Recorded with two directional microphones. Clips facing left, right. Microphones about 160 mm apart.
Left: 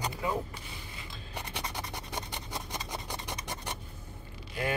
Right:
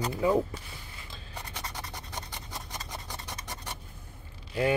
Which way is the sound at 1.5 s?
15° left (ahead or behind).